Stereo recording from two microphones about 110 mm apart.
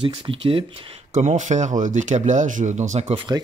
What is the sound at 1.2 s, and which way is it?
Speech, 90° right.